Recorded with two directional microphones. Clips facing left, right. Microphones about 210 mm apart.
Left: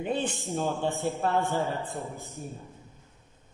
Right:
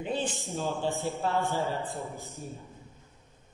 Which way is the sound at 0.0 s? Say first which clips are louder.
Left 2 dB; 60° left (ahead or behind).